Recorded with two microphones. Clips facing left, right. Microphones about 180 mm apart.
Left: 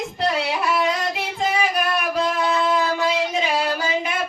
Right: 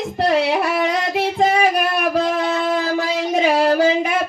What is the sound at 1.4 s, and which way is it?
Singing, 50° right (ahead or behind).